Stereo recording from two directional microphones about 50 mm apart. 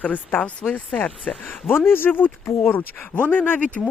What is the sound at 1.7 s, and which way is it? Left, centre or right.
Speech, left.